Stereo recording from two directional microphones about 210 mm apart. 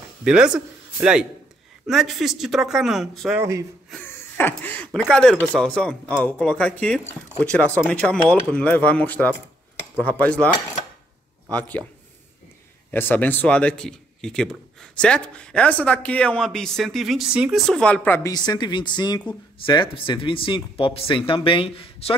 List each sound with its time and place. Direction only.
0.2 s speech: 5° right (ahead or behind)
1.9 s speech: centre (ahead or behind)
3.9 s speech: 10° left (ahead or behind)
11.5 s speech: 5° left (ahead or behind)
12.9 s speech: 10° left (ahead or behind); by 22.1 s 25° left (ahead or behind)